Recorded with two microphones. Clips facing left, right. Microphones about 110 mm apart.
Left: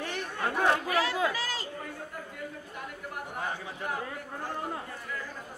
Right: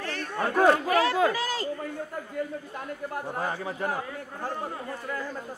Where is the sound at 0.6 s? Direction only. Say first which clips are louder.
Right 6 dB; 40° right (ahead or behind).